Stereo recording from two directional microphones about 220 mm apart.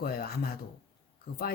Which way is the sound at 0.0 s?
45° left (ahead or behind).